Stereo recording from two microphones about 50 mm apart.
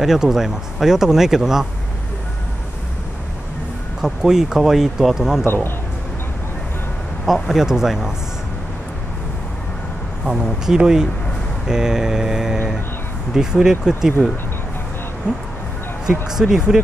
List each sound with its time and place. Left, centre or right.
0.0 s speech: centre
4.0 s speech: centre
5.4 s speech: left
7.2 s speech: centre
10.6 s speech: centre
16.3 s speech: centre